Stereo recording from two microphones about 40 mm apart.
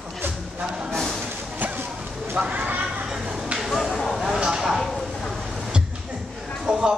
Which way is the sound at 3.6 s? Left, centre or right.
Centre.